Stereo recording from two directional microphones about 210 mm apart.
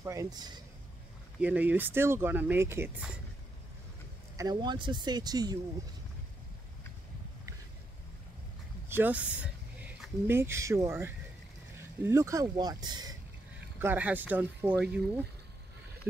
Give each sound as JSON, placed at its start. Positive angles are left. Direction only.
{"t": 0.0, "sound": "speech", "side_deg": -15}
{"t": 4.4, "sound": "speech", "side_deg": -20}
{"t": 8.8, "sound": "speech", "side_deg": -10}
{"t": 13.7, "sound": "speech", "side_deg": -10}